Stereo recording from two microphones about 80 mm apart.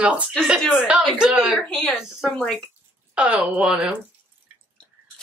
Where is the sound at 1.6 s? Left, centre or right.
Centre.